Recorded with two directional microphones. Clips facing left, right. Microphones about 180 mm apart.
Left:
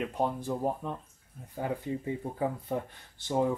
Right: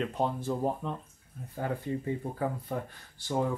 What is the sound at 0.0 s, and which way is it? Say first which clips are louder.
Speech: even; 10° left (ahead or behind).